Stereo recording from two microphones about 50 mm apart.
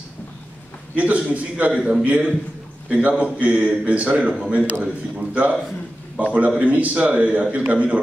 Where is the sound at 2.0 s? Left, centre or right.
Right.